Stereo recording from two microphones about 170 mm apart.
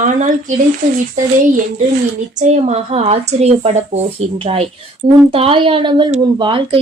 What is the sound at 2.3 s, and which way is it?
Speech, 40° right (ahead or behind).